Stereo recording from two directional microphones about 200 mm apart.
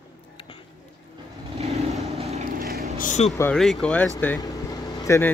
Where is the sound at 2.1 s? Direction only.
35° right (ahead or behind).